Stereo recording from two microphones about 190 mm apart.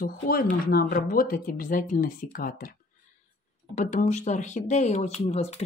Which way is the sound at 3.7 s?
40° left (ahead or behind).